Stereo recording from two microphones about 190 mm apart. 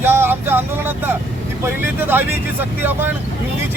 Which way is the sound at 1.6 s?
10° right (ahead or behind).